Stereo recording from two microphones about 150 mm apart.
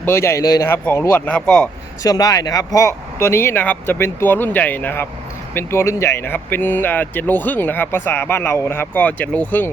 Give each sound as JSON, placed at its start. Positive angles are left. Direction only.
{"t": 0.0, "sound": "speech", "side_deg": 15}
{"t": 2.0, "sound": "speech", "side_deg": 25}